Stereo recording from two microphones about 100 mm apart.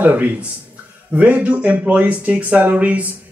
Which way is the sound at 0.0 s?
15° right (ahead or behind).